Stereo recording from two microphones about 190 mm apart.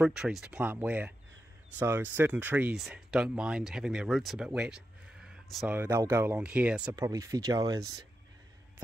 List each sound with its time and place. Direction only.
0.0 s speech: 5° right (ahead or behind)
5.8 s speech: 15° right (ahead or behind)
7.0 s speech: 15° right (ahead or behind)